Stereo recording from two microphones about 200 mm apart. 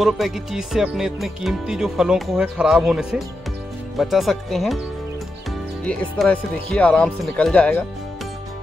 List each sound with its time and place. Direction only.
0.0 s speech: centre (ahead or behind)
5.9 s speech: 5° left (ahead or behind)